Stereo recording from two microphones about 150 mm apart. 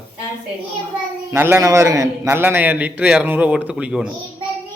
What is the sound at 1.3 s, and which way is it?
A man's voice, 20° right (ahead or behind).